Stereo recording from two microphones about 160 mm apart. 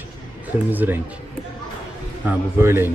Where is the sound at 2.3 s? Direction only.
15° right (ahead or behind).